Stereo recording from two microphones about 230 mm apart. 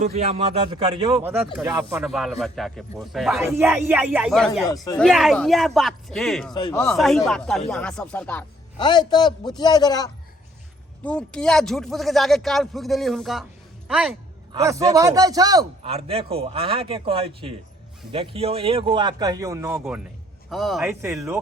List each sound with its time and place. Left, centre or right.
0.0 s a man's voice: right
1.2 s speech: centre
6.5 s a man's voice: centre
6.9 s speech: centre
8.8 s a man's voice: centre
11.0 s speech: centre
14.5 s a man's voice: centre
20.5 s speech: centre
21.0 s speech: centre